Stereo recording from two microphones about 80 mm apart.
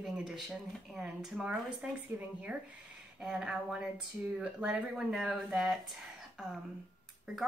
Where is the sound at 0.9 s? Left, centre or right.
Centre.